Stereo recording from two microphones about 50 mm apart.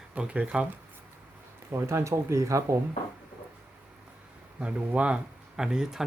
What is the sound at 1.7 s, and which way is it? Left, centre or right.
Speech, right.